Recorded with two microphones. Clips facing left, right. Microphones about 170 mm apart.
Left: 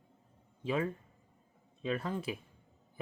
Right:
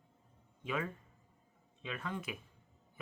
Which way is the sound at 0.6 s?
30° left (ahead or behind).